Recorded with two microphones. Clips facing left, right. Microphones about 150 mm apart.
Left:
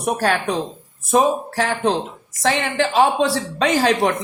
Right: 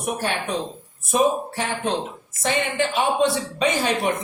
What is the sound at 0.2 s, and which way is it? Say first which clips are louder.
A woman's voice: left 5 dB; 90° left.